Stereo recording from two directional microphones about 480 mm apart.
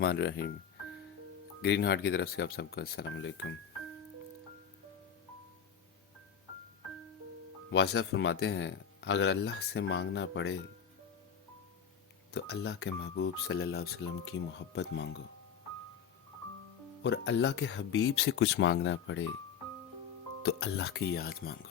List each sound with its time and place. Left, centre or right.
0.0 s speech: centre
1.6 s speech: left
7.7 s speech: left
12.3 s speech: left
17.0 s speech: left
20.4 s speech: left